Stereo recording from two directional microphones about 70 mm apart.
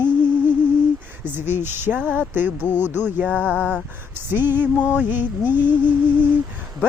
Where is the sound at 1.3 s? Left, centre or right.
Right.